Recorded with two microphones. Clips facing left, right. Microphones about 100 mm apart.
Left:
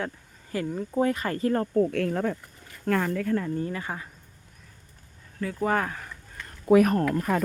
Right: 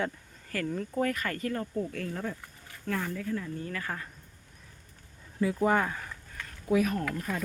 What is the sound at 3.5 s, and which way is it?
Speech, 25° left (ahead or behind).